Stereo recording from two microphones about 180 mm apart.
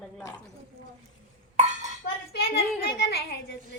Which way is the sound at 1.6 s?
40° right (ahead or behind).